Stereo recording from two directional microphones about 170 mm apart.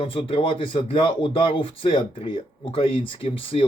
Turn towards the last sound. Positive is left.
turn(degrees=35)  # may be behind; listen again after turning